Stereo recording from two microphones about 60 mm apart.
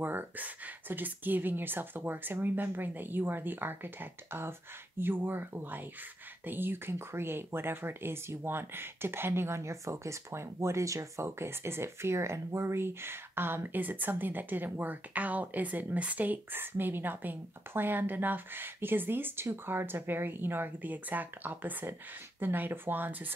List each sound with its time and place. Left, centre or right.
0.0 s speech: right